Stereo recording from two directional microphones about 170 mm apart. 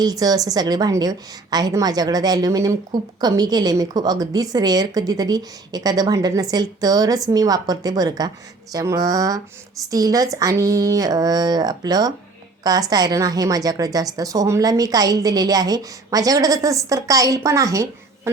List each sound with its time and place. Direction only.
0.0 s a woman's voice: 20° right (ahead or behind)